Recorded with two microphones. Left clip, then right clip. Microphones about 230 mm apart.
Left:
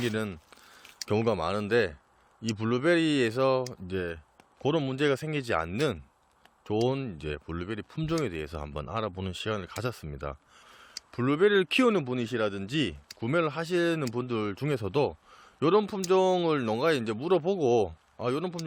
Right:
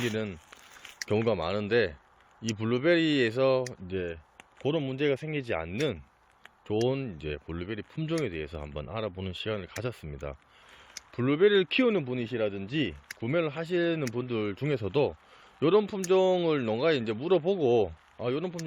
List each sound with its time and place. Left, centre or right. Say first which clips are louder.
0.0 s speech: left 1 dB; centre